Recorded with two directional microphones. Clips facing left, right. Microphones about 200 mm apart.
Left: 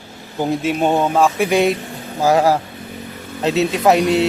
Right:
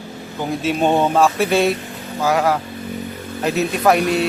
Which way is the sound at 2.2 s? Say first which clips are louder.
Left 3 dB; 35° left (ahead or behind).